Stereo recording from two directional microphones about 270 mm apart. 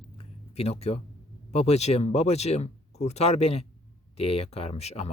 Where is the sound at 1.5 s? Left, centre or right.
Left.